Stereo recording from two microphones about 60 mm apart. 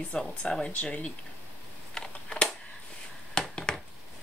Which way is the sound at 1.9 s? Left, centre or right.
Centre.